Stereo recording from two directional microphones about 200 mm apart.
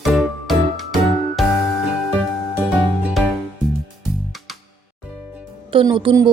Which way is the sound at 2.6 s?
5° right (ahead or behind).